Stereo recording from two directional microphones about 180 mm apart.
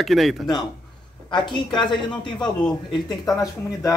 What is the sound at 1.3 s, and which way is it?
Speech, 25° left (ahead or behind).